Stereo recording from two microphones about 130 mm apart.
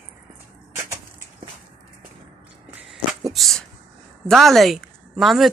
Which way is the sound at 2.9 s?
Centre (ahead or behind).